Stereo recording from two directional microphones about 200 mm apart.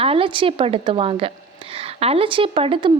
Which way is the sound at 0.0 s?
25° right (ahead or behind).